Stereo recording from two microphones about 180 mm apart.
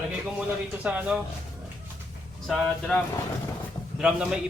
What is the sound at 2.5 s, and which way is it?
A man's voice, 5° left (ahead or behind).